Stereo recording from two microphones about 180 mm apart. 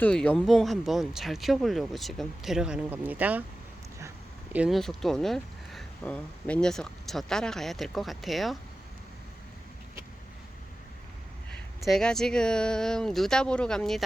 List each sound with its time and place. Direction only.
0.0 s speech: 5° left (ahead or behind)
4.5 s speech: 5° right (ahead or behind)
11.5 s speech: centre (ahead or behind)